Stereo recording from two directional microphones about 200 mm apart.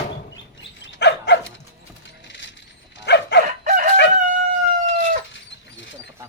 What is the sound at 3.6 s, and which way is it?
Chicken, 40° right (ahead or behind).